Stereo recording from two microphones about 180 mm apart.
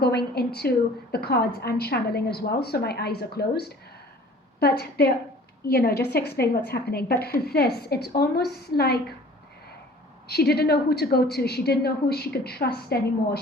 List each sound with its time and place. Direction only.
0.0 s a woman's voice: 60° left (ahead or behind)
10.2 s a woman's voice: 60° left (ahead or behind)